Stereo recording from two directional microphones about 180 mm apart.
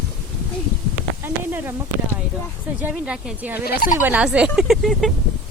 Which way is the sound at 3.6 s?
60° left (ahead or behind).